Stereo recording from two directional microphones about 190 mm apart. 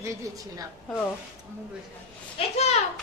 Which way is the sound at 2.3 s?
35° left (ahead or behind).